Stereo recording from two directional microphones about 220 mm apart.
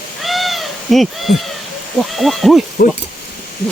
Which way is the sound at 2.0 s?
Centre (ahead or behind).